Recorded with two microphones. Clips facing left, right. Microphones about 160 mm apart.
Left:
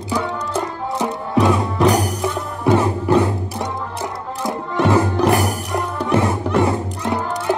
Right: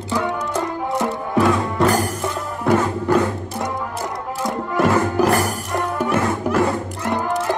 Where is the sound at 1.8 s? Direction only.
Centre (ahead or behind).